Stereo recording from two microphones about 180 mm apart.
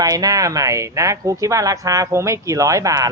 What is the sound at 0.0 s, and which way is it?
Speech, 20° right (ahead or behind).